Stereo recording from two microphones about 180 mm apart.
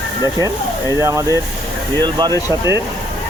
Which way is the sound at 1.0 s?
15° right (ahead or behind).